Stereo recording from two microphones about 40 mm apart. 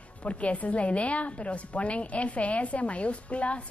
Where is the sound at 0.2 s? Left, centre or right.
Left.